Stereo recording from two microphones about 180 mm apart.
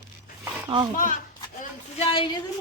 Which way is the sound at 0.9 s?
45° left (ahead or behind).